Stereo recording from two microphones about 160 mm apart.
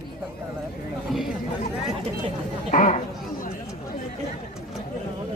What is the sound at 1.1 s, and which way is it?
Speech, centre (ahead or behind).